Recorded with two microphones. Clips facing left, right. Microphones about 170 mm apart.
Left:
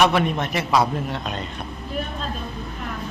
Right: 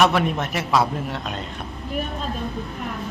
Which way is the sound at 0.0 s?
Centre (ahead or behind).